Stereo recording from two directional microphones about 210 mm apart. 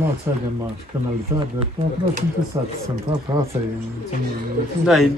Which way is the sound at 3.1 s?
30° right (ahead or behind).